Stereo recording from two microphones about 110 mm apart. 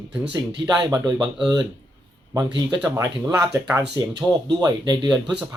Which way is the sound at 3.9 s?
40° right (ahead or behind).